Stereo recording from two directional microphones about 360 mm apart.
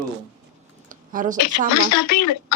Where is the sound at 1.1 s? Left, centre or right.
Right.